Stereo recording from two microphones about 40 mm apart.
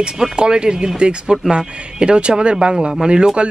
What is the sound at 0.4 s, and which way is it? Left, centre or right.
Speech, right.